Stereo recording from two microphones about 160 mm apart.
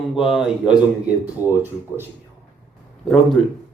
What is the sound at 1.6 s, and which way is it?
Speech, 15° right (ahead or behind).